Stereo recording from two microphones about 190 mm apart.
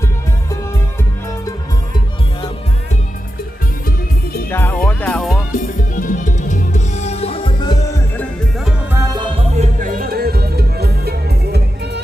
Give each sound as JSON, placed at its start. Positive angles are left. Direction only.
{"t": 4.4, "sound": "music", "side_deg": 10}
{"t": 5.5, "sound": "music", "side_deg": 45}
{"t": 8.1, "sound": "music", "side_deg": 5}
{"t": 8.9, "sound": "music", "side_deg": -15}
{"t": 9.6, "sound": "music", "side_deg": -45}